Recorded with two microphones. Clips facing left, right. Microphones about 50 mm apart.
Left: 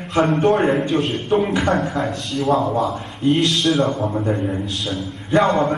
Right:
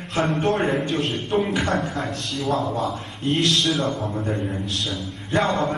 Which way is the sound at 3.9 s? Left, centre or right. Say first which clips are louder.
Left 5 dB; left.